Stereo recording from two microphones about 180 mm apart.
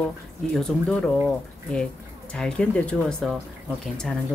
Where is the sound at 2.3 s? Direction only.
5° left (ahead or behind).